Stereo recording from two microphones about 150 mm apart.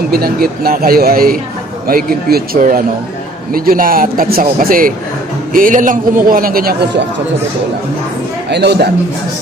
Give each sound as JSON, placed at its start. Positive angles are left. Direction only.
{"t": 0.1, "sound": "speech", "side_deg": -90}